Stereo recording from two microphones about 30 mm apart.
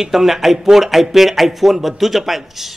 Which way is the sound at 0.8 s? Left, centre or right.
Centre.